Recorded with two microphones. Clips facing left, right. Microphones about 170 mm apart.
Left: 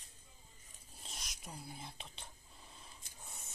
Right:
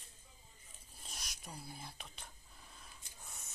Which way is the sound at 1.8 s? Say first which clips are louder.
Left 1 dB; 25° left (ahead or behind).